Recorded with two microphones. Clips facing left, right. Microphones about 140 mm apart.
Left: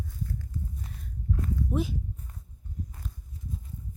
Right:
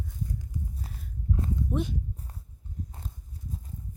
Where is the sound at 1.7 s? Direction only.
5° left (ahead or behind).